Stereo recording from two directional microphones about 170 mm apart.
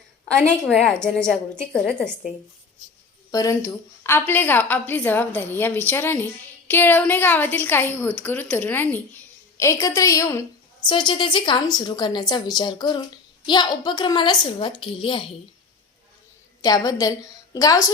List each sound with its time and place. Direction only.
0.3 s a woman's voice: centre (ahead or behind)
3.3 s a woman's voice: 20° left (ahead or behind)
16.6 s a woman's voice: 20° left (ahead or behind)